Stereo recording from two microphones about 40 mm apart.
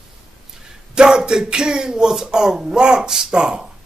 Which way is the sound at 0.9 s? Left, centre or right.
Right.